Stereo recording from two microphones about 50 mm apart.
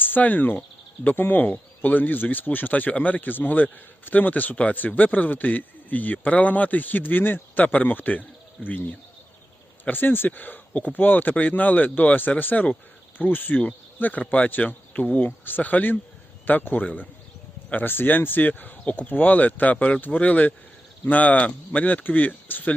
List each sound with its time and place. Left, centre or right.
0.0 s a man's voice: left